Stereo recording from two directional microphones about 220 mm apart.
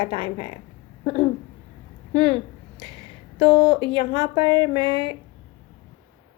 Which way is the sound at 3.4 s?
20° right (ahead or behind).